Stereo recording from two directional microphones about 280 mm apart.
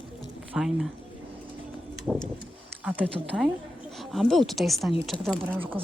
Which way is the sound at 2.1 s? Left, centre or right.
Centre.